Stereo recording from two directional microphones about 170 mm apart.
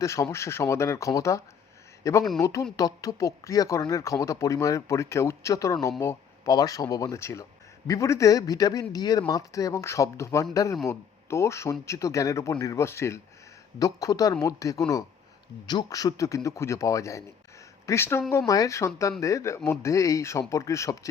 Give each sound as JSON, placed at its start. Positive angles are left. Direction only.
{"t": 0.0, "sound": "speech", "side_deg": 15}